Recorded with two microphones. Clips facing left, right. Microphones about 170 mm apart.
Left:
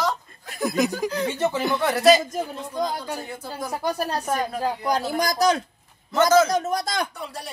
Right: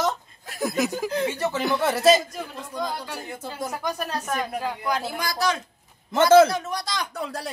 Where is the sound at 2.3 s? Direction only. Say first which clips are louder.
Left 5 dB; 40° left (ahead or behind).